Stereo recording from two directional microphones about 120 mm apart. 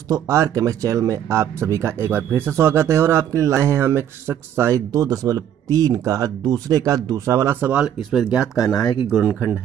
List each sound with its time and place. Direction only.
0.1 s speech: 25° right (ahead or behind)
8.1 s speech: 5° right (ahead or behind)